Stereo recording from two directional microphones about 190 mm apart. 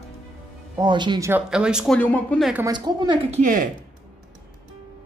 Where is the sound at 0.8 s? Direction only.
25° right (ahead or behind).